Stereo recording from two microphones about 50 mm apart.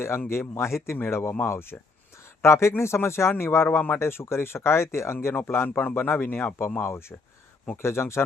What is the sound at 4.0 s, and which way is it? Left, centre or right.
Speech, left.